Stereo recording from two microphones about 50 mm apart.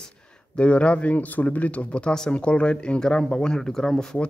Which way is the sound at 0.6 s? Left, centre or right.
Left.